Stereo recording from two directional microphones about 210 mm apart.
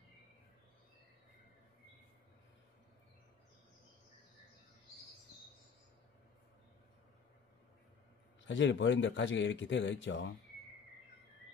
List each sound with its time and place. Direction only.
8.5 s speech: 60° left (ahead or behind)